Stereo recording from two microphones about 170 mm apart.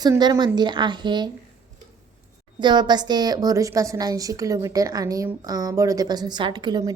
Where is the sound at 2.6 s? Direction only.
25° right (ahead or behind).